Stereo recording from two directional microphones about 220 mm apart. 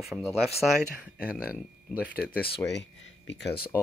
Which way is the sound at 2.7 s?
55° left (ahead or behind).